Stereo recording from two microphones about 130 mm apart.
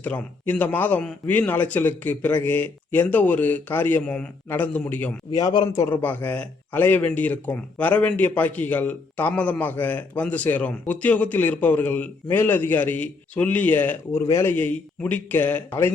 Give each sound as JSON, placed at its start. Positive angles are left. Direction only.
{"t": 0.0, "sound": "a man's voice", "side_deg": 10}
{"t": 5.4, "sound": "a man's voice", "side_deg": 30}
{"t": 6.0, "sound": "a man's voice", "side_deg": 10}